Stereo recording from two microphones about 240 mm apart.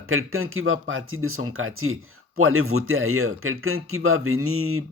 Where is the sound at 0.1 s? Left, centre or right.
Right.